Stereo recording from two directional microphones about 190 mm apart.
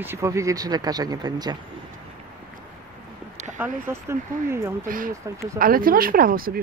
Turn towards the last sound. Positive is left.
turn(degrees=-50)  # may be behind; listen again after turning